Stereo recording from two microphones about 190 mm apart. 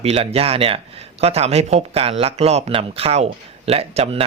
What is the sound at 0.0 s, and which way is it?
Speech, 30° right (ahead or behind).